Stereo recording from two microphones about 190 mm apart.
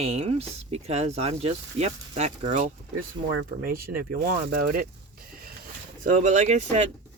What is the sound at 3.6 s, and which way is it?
Speech, 50° right (ahead or behind).